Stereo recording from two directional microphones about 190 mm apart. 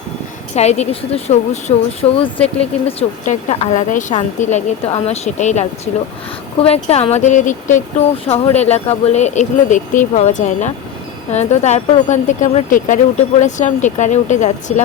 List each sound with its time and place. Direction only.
0.5 s a woman's voice: 35° left (ahead or behind)
8.2 s a woman's voice: 30° left (ahead or behind)